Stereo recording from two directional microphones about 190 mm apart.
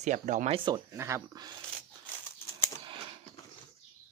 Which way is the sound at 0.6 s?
20° right (ahead or behind).